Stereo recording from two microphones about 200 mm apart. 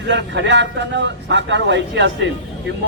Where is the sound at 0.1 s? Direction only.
60° right (ahead or behind).